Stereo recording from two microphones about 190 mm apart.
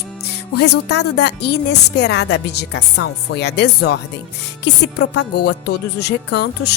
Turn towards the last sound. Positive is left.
turn(degrees=60)  # may be behind; listen again after turning